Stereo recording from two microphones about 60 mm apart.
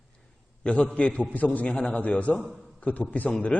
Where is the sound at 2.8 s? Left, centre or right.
Left.